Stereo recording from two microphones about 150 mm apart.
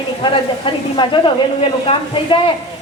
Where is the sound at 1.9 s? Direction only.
45° left (ahead or behind).